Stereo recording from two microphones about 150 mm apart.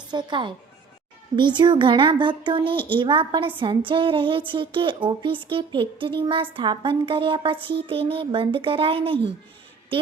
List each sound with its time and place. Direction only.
0.1 s a woman's voice: 30° right (ahead or behind)